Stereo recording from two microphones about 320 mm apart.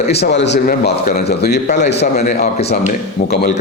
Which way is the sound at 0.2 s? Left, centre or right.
Left.